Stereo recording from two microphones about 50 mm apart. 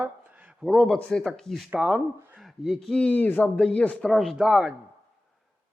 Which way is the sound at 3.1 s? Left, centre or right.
Left.